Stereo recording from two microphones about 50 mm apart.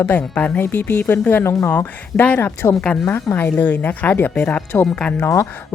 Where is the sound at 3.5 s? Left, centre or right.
Left.